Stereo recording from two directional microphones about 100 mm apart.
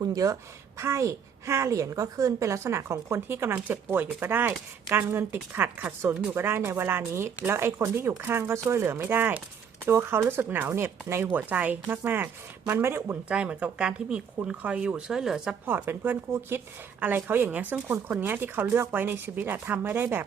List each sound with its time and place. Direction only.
0.0 s a woman's voice: 35° right (ahead or behind)
13.2 s speech: 10° right (ahead or behind)
15.6 s speech: 20° right (ahead or behind)